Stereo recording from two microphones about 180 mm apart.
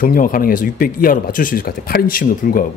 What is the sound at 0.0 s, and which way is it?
Speech, 50° left (ahead or behind).